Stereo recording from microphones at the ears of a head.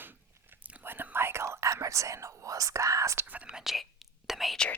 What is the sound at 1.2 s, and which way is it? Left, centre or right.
Speech, right.